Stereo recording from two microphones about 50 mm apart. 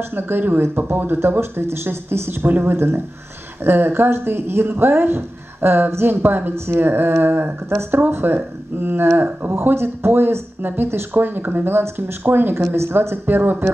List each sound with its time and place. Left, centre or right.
0.1 s speech: right
12.6 s speech: right